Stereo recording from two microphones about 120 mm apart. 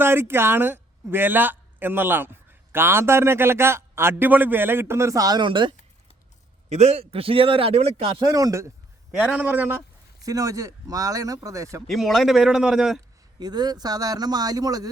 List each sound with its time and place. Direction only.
0.0 s speech: 20° right (ahead or behind); by 5.7 s 40° right (ahead or behind)
6.7 s a man's voice: 65° right (ahead or behind)
8.2 s speech: 30° right (ahead or behind)
9.3 s speech: 10° right (ahead or behind)
10.2 s speech: 30° right (ahead or behind)
11.9 s a man's voice: centre (ahead or behind)
13.4 s speech: 35° right (ahead or behind)